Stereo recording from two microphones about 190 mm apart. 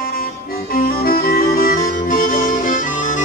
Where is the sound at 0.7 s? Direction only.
50° left (ahead or behind).